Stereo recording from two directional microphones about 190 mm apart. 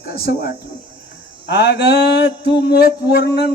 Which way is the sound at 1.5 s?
65° left (ahead or behind).